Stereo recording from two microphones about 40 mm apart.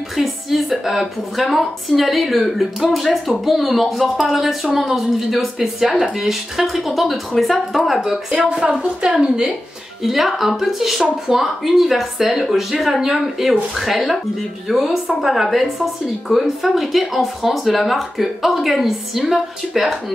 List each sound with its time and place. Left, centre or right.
0.1 s a woman's voice: centre
8.0 s speech: centre
10.0 s a woman's voice: centre